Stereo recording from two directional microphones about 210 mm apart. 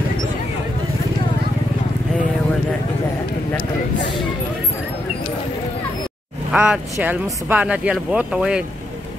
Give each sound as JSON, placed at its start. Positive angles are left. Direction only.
{"t": 6.5, "sound": "speech", "side_deg": -5}